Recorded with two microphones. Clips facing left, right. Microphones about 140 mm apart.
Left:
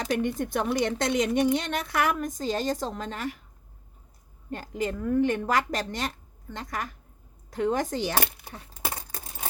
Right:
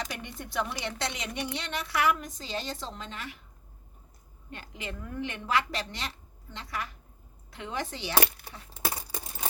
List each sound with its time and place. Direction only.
0.0 s a woman's voice: 50° left (ahead or behind)
4.5 s a woman's voice: 40° left (ahead or behind)
9.0 s a sound: 10° right (ahead or behind)